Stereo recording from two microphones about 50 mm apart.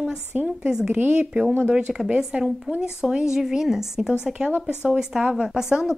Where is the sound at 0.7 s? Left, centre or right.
Centre.